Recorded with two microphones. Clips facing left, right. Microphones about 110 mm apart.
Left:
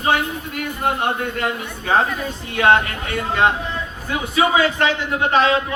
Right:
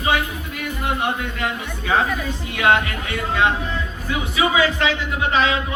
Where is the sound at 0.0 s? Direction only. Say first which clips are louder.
Left 2 dB; 40° left (ahead or behind).